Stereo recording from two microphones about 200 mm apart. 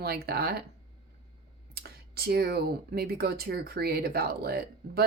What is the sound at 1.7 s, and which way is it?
Speech, 50° right (ahead or behind).